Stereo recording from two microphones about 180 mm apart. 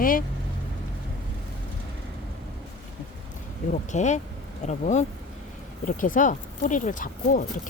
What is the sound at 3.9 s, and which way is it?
Speech, 40° left (ahead or behind).